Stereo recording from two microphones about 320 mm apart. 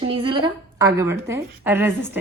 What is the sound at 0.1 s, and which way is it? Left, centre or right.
A woman's voice, centre.